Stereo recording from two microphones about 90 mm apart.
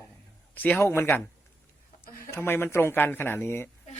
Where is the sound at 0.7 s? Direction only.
30° left (ahead or behind).